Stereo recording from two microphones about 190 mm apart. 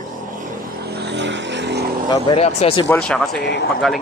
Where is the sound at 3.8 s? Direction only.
Centre (ahead or behind).